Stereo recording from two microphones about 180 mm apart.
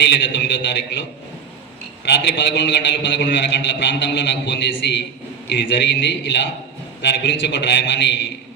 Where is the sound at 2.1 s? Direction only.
75° left (ahead or behind).